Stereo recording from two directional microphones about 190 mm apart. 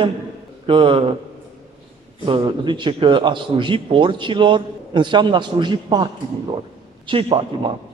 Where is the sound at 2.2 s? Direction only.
25° right (ahead or behind).